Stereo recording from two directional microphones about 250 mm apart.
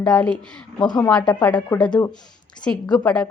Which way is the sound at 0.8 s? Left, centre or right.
Centre.